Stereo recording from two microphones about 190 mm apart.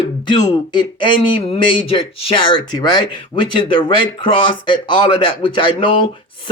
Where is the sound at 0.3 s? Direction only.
25° left (ahead or behind).